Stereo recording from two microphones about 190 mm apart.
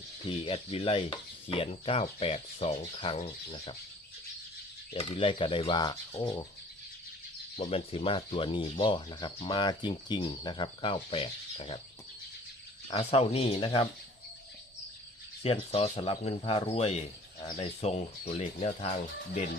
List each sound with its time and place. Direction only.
0.3 s speech: 30° left (ahead or behind)
4.9 s speech: 25° left (ahead or behind)
7.5 s speech: 35° left (ahead or behind)
12.9 s speech: 30° left (ahead or behind)
15.4 s speech: 30° left (ahead or behind)